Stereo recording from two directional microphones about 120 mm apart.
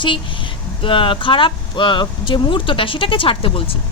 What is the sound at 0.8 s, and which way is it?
Speech, 45° left (ahead or behind).